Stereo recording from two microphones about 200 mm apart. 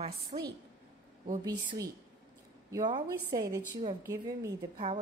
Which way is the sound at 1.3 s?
20° right (ahead or behind).